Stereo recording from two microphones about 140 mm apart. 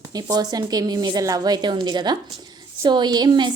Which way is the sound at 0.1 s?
30° right (ahead or behind).